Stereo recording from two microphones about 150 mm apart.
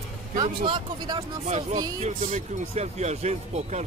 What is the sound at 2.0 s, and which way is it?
Speech, 50° right (ahead or behind).